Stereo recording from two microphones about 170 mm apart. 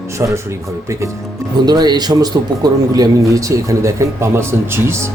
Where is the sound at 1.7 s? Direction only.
25° right (ahead or behind).